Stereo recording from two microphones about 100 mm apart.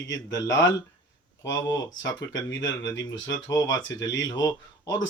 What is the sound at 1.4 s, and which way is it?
Speech, 40° left (ahead or behind).